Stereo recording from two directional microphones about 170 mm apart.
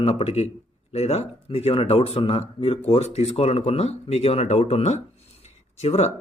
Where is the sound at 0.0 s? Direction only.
35° left (ahead or behind).